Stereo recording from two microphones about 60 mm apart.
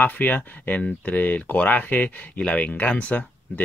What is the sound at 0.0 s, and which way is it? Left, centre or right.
Speech, left.